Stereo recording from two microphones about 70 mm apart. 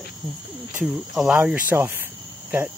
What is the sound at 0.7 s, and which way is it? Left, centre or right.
Speech, centre.